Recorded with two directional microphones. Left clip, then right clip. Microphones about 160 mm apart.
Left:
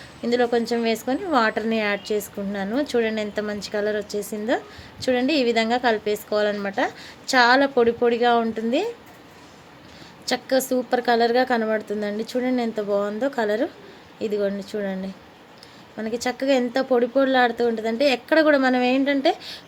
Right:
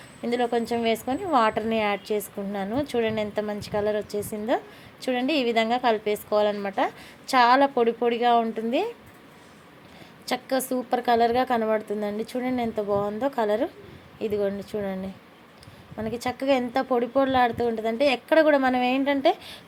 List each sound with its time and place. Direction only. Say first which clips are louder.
0.2 s a woman's voice: left 4 dB; 5° right (ahead or behind)
10.2 s a woman's voice: left 4 dB; 10° right (ahead or behind)